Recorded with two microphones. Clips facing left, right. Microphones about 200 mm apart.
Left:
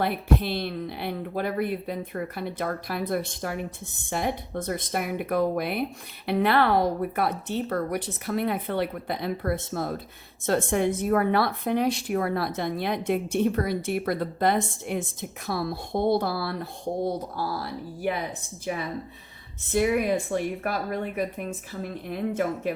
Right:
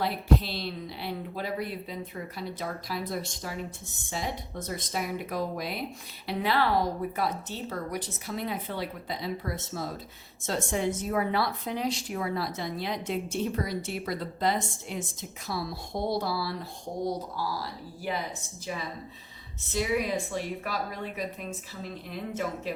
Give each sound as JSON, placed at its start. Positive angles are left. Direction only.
{"t": 0.0, "sound": "a woman's voice", "side_deg": 55}
{"t": 19.7, "sound": "speech", "side_deg": 55}